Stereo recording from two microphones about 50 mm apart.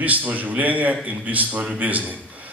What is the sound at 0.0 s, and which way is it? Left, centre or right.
A man's voice, right.